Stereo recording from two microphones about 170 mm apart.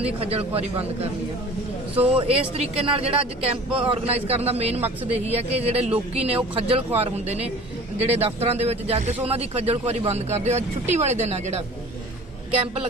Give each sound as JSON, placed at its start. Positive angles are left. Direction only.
{"t": 0.0, "sound": "a man's voice", "side_deg": -35}
{"t": 2.0, "sound": "a man's voice", "side_deg": -35}